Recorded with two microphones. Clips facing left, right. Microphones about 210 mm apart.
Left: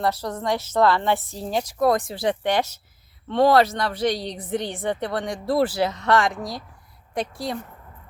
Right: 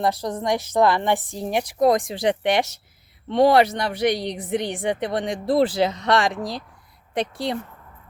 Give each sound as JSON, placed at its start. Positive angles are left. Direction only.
{"t": 0.0, "sound": "a woman's voice", "side_deg": -15}